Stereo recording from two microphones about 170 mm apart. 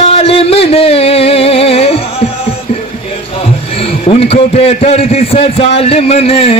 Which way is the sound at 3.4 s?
35° left (ahead or behind).